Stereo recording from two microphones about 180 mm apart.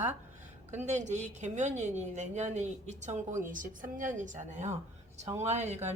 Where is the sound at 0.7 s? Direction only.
40° right (ahead or behind).